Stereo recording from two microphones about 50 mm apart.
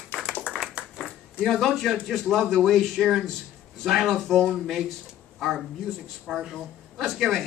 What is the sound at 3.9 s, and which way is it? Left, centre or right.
Speech, centre.